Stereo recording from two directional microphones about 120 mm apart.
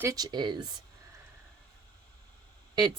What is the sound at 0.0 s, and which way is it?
Speech, 30° right (ahead or behind).